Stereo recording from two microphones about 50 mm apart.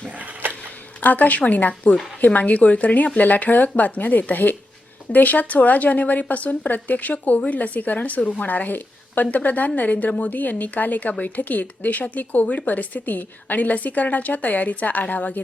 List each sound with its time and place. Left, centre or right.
1.0 s a woman's voice: left